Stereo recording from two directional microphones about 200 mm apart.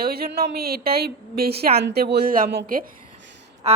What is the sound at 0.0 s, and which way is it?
A woman's voice, 50° right (ahead or behind).